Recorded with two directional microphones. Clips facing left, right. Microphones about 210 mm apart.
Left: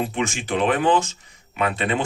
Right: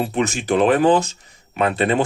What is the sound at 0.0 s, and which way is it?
Speech, 40° right (ahead or behind).